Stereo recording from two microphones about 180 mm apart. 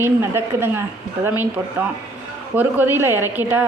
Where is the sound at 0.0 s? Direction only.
15° right (ahead or behind).